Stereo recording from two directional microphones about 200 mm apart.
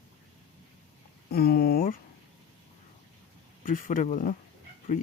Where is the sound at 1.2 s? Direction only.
50° left (ahead or behind).